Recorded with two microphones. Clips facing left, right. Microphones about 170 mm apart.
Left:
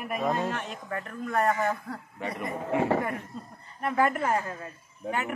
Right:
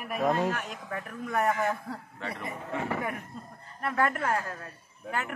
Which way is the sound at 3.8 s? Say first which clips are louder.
Left 3 dB; 5° left (ahead or behind).